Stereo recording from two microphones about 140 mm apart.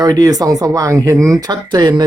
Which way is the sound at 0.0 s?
25° right (ahead or behind).